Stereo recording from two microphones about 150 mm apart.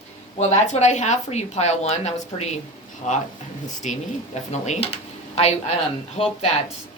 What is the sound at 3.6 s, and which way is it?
Speech, 55° left (ahead or behind).